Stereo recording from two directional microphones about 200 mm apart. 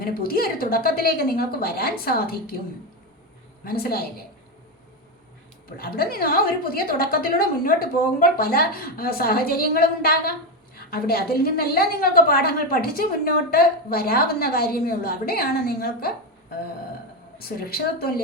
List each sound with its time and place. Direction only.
0.0 s a woman's voice: 50° left (ahead or behind)
3.6 s a woman's voice: 50° left (ahead or behind)
5.7 s a woman's voice: 50° left (ahead or behind)
17.3 s a woman's voice: 50° left (ahead or behind)